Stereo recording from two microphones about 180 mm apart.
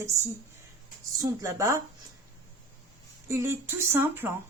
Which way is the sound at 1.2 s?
20° right (ahead or behind).